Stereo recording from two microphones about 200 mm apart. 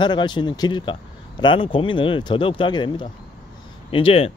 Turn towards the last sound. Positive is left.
turn(degrees=30)  # may be behind; listen again after turning